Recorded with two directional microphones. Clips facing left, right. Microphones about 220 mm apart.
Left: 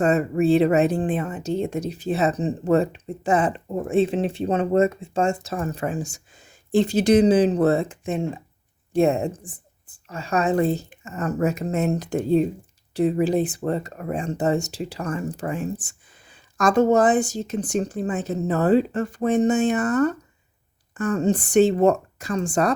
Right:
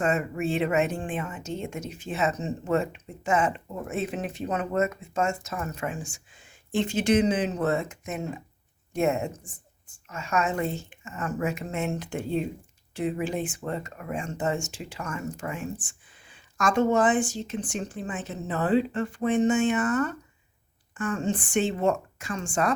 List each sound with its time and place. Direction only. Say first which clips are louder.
0.0 s a woman's voice: left 7 dB; 35° left (ahead or behind)